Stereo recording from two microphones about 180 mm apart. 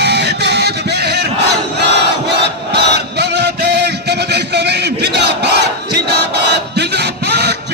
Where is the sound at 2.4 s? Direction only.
70° right (ahead or behind).